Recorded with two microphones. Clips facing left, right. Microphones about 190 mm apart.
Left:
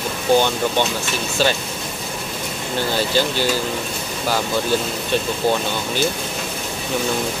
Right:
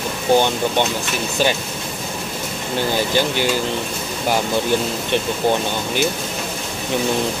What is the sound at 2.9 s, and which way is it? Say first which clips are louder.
Speech: even; 15° right (ahead or behind).